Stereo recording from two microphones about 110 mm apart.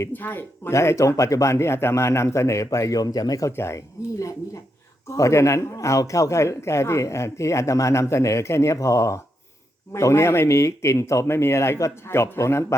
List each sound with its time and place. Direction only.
0.0 s speech: 20° left (ahead or behind)